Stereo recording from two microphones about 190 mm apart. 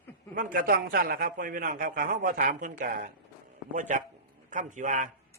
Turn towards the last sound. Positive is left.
turn(degrees=-40)  # may be behind; listen again after turning